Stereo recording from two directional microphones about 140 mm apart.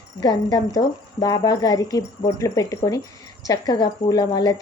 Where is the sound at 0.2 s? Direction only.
30° left (ahead or behind).